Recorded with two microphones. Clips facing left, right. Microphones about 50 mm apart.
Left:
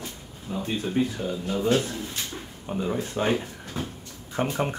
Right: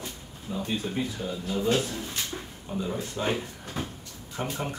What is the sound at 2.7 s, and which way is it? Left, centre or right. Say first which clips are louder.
Speech: left 4 dB; left.